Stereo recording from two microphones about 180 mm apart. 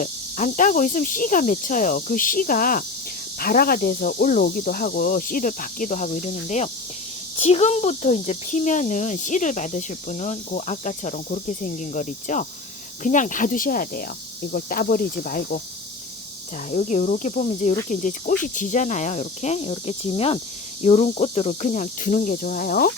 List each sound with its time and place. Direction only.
0.0 s speech: 45° left (ahead or behind)
16.7 s speech: 40° left (ahead or behind)